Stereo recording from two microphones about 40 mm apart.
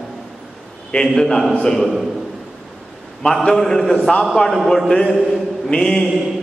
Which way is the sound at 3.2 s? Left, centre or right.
Centre.